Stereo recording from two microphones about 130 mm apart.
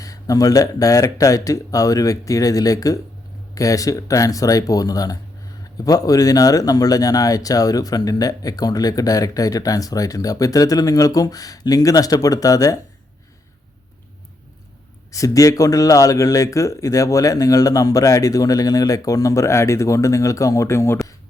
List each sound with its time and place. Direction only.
0.0 s speech: 25° left (ahead or behind)
15.1 s speech: 25° left (ahead or behind)